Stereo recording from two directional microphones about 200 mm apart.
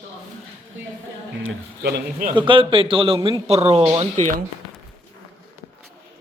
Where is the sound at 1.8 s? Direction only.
55° right (ahead or behind).